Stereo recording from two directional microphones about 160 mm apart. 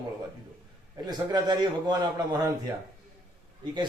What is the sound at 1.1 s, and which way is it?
A man's voice, 25° right (ahead or behind).